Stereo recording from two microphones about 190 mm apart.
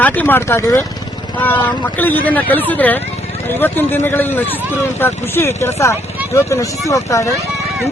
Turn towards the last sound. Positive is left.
turn(degrees=15)  # may be behind; listen again after turning